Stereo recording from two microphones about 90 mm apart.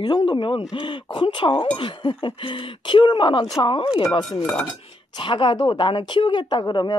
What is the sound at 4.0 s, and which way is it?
Speech, 45° left (ahead or behind).